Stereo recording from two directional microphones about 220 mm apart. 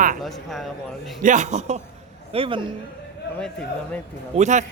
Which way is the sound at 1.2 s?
35° right (ahead or behind).